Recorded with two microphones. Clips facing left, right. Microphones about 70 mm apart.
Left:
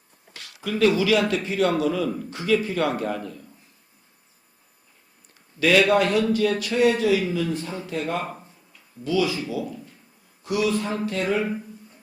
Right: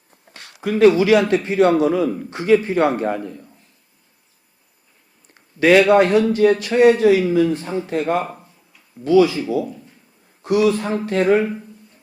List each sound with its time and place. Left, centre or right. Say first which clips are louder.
0.3 s speech: right 6 dB; right
5.3 s a man's voice: right 6 dB; right
10.4 s speech: right 7 dB; right